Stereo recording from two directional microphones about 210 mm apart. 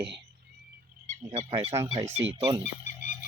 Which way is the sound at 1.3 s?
25° right (ahead or behind).